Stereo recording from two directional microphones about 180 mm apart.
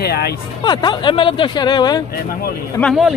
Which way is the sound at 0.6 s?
25° left (ahead or behind).